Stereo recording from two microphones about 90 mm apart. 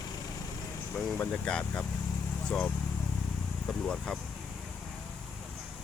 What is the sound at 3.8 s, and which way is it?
Speech, 10° left (ahead or behind).